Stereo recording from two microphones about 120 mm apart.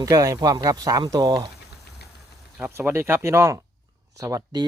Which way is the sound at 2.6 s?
20° right (ahead or behind).